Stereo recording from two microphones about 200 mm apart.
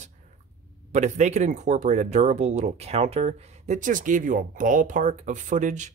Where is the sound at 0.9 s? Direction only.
35° right (ahead or behind).